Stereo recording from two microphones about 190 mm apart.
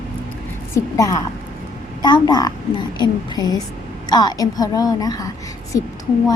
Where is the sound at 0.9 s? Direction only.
20° left (ahead or behind).